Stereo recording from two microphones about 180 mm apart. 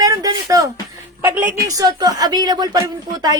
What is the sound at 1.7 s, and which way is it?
Speech, 20° right (ahead or behind).